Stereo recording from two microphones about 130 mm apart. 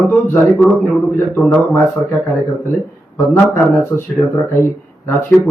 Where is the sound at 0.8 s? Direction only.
Centre (ahead or behind).